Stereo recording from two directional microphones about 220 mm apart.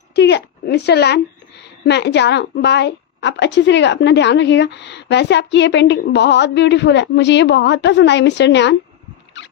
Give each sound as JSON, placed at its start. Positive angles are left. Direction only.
{"t": 0.2, "sound": "a woman's voice", "side_deg": 50}